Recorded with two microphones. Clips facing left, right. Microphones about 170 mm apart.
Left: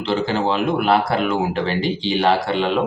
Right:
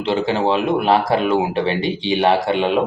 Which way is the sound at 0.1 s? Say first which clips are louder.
Right 2 dB; 20° right (ahead or behind).